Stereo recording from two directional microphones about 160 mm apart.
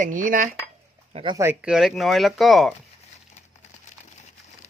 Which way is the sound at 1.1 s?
35° right (ahead or behind).